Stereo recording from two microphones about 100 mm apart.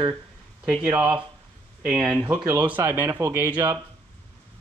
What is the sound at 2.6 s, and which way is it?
Speech, 20° right (ahead or behind).